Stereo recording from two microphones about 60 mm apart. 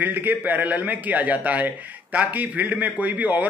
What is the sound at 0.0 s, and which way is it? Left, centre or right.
A man's voice, right.